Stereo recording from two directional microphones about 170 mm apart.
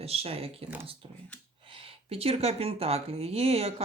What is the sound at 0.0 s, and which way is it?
Speech, 35° right (ahead or behind).